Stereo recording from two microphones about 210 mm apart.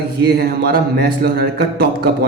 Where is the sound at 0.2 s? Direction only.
50° right (ahead or behind).